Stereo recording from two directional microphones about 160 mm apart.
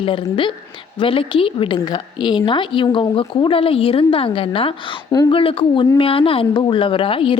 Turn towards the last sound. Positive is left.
turn(degrees=35)  # may be behind; listen again after turning